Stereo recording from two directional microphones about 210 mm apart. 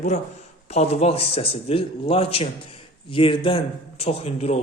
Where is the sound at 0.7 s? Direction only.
30° left (ahead or behind).